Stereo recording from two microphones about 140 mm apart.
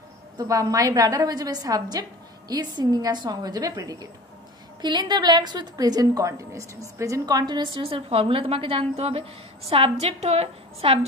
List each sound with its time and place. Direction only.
0.4 s a woman's voice: 25° right (ahead or behind); by 11.1 s 45° right (ahead or behind)